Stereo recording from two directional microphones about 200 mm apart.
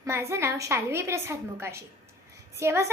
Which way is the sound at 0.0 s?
15° right (ahead or behind).